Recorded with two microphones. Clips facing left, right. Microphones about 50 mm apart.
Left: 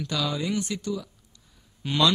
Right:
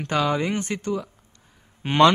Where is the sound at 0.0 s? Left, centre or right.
Right.